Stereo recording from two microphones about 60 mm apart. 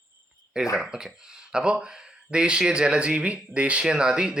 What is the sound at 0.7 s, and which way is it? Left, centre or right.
Speech, centre.